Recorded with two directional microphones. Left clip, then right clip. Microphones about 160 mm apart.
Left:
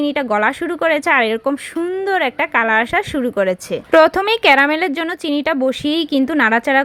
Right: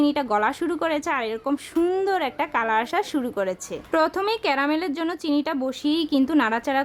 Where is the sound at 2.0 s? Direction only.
20° left (ahead or behind).